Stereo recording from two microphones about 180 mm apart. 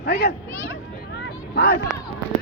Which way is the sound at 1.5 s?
65° left (ahead or behind).